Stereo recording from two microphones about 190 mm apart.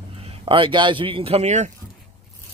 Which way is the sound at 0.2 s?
30° right (ahead or behind).